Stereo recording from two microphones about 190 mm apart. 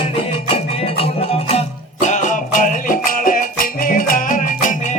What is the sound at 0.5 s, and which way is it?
Music, 30° left (ahead or behind).